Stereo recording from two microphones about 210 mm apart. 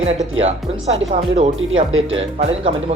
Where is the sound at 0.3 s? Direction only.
30° right (ahead or behind).